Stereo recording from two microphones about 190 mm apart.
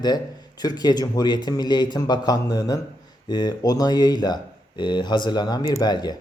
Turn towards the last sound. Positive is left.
turn(degrees=20)  # may be behind; listen again after turning